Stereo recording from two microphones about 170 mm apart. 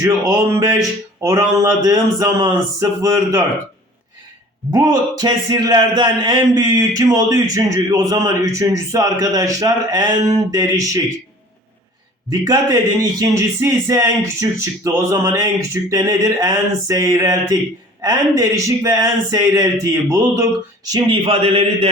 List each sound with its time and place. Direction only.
0.0 s music: 15° right (ahead or behind)
1.2 s speech: 20° right (ahead or behind)
4.7 s speech: 25° right (ahead or behind)
12.3 s speech: 20° right (ahead or behind)